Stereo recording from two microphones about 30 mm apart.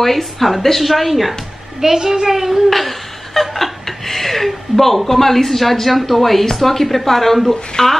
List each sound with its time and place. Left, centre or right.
0.0 s a woman's voice: centre
1.8 s a woman's voice: centre
2.7 s speech: centre
7.7 s speech: centre